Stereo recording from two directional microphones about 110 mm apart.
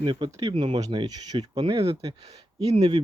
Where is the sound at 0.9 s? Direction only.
40° right (ahead or behind).